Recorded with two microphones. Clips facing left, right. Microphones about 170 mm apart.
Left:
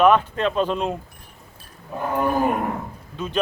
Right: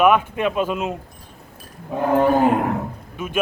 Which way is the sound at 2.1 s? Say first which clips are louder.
Right 5 dB; 90° right.